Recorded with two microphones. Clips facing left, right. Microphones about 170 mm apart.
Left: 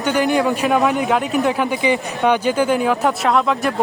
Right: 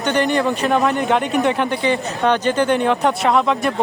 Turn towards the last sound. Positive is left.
turn(degrees=0)  # may be behind; listen again after turning